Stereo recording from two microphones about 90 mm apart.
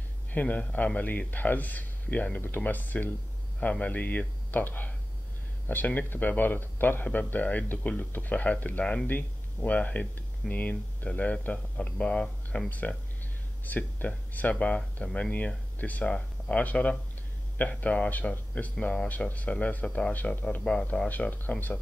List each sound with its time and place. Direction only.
0.3 s speech: 20° left (ahead or behind)